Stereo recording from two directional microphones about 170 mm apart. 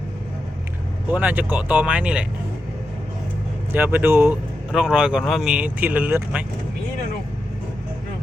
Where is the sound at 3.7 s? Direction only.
10° right (ahead or behind).